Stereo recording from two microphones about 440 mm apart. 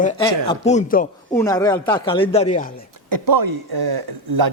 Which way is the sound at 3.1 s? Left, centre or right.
Right.